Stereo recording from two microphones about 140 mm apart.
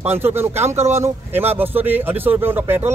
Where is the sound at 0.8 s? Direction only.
50° right (ahead or behind).